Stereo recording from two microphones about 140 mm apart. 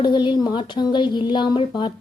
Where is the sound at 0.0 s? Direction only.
35° left (ahead or behind).